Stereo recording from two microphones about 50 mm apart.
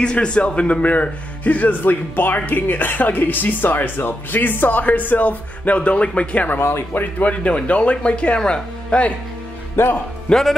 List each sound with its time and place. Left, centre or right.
0.0 s a man's voice: left
6.5 s speech: left
9.8 s speech: left
10.3 s speech: centre